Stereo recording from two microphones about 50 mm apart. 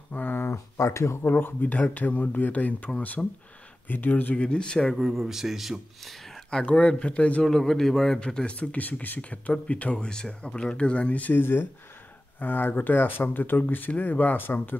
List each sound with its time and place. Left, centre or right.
0.1 s a sound: left
0.5 s speech: left
1.2 s speech: left
3.2 s speech: centre
3.8 s speech: left
4.4 s speech: left
4.9 s speech: centre
6.5 s speech: left
7.4 s speech: centre
8.5 s speech: left
10.0 s speech: centre
11.3 s speech: left